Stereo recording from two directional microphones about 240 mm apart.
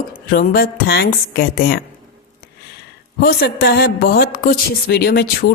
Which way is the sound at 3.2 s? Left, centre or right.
Left.